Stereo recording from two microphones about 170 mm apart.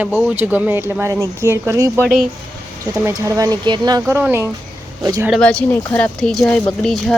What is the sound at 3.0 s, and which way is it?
Speech, 15° right (ahead or behind).